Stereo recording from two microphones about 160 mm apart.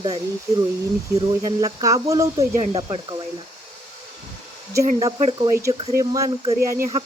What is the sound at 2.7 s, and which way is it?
Cricket, 30° right (ahead or behind).